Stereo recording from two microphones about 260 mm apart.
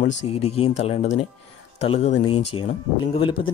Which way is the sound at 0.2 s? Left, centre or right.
Left.